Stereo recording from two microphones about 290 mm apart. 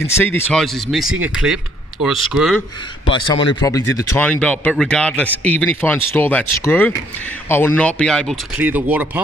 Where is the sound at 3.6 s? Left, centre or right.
Centre.